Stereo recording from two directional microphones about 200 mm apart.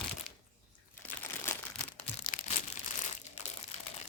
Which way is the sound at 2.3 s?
45° left (ahead or behind).